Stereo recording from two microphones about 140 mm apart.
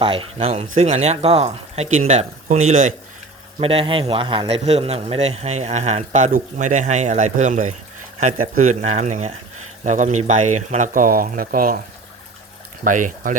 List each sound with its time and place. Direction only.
0.0 s a man's voice: 40° right (ahead or behind); by 2.9 s 65° right (ahead or behind)
3.6 s a man's voice: 45° right (ahead or behind)
6.3 s speech: 60° right (ahead or behind); by 11.8 s 90° right
12.8 s speech: 70° right (ahead or behind)